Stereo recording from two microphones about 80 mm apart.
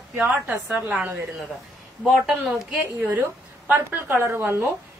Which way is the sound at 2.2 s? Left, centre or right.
Centre.